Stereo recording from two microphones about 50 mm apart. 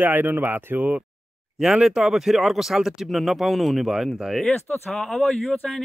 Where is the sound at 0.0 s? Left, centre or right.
Right.